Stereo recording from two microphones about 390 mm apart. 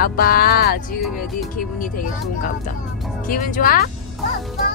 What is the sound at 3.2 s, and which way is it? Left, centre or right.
Music, left.